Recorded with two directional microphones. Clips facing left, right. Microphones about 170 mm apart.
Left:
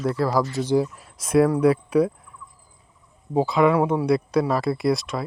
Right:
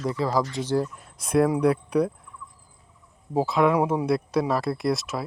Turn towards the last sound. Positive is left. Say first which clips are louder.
# left 3 dB
turn(degrees=0)  # may be behind; listen again after turning